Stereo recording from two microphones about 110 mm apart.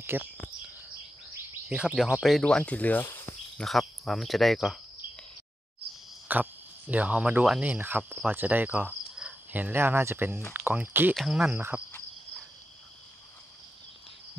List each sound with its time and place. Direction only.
0.0 s speech: 20° right (ahead or behind)
1.7 s speech: 10° right (ahead or behind); by 3.1 s 15° left (ahead or behind)
3.5 s speech: centre (ahead or behind)
6.2 s speech: 15° right (ahead or behind)
8.1 s cricket: 15° right (ahead or behind)
10.5 s speech: 20° right (ahead or behind)
11.1 s speech: 5° right (ahead or behind)